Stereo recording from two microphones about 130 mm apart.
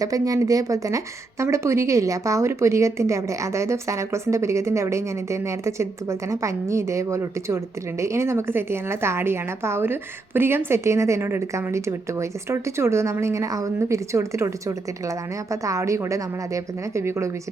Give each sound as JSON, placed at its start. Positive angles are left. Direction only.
{"t": 0.0, "sound": "a woman's voice", "side_deg": -25}